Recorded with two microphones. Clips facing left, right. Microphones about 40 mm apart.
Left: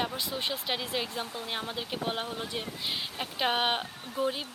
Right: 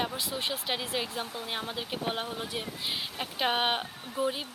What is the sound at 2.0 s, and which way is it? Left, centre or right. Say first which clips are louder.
Speech: even; centre.